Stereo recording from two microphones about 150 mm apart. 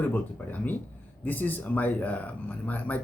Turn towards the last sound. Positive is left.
turn(degrees=10)  # may be behind; listen again after turning